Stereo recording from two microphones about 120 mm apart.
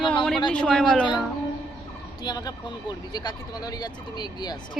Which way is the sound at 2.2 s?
35° left (ahead or behind).